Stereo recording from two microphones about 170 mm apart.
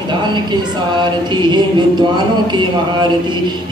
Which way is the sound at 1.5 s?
25° right (ahead or behind).